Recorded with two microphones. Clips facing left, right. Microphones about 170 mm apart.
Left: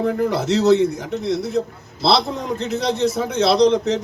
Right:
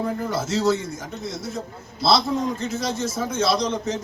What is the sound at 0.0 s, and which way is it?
A man's voice, 70° left (ahead or behind).